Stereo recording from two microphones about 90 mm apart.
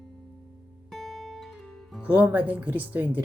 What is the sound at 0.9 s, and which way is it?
Guitar, 5° left (ahead or behind).